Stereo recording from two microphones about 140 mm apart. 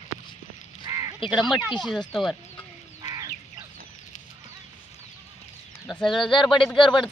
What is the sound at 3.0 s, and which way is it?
Duck, 25° right (ahead or behind).